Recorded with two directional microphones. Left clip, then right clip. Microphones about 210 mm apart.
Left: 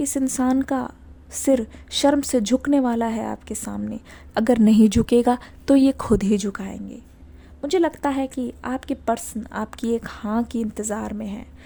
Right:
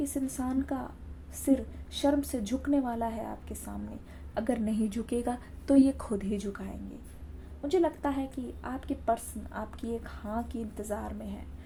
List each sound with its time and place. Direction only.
0.0 s a woman's voice: 55° left (ahead or behind)